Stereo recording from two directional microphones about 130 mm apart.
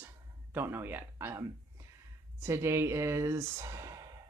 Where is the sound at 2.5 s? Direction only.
20° right (ahead or behind).